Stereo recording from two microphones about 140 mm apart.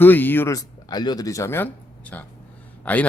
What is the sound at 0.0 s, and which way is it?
A man's voice, 15° left (ahead or behind).